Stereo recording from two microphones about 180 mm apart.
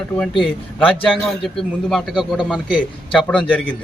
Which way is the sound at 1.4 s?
Centre (ahead or behind).